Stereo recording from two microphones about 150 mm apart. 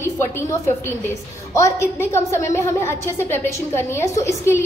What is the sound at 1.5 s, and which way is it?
A woman's voice, 20° left (ahead or behind).